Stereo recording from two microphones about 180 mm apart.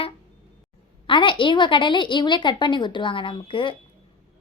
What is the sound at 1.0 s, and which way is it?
A woman's voice, 25° left (ahead or behind).